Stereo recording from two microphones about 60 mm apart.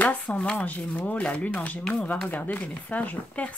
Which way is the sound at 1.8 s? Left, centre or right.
Centre.